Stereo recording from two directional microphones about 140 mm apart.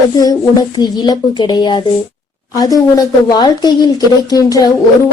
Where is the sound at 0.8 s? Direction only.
30° left (ahead or behind).